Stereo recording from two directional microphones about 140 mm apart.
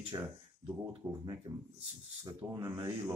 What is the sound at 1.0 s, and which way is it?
Speech, 15° right (ahead or behind).